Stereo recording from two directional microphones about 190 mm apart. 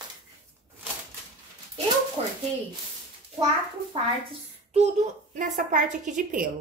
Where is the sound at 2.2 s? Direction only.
30° right (ahead or behind).